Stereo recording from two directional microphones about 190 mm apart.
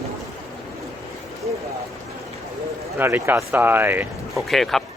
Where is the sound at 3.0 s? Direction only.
10° right (ahead or behind).